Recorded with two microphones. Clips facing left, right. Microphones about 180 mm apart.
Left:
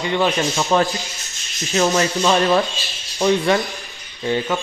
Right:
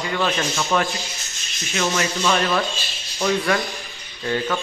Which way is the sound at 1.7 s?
35° left (ahead or behind).